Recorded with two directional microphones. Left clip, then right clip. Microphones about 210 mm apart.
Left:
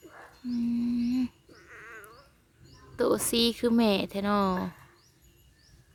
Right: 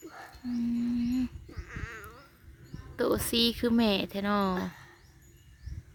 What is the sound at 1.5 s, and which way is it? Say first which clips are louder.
Sheep: right 3 dB; 45° right (ahead or behind).